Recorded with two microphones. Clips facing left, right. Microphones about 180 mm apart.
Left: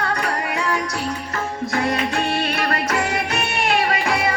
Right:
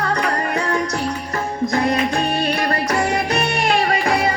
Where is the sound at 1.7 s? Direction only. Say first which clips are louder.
Right 2 dB; 40° right (ahead or behind).